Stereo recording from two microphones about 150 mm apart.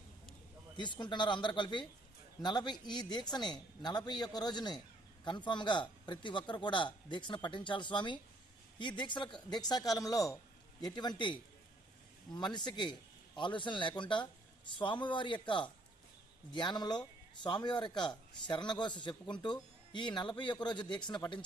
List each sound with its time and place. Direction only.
0.8 s a man's voice: 30° left (ahead or behind)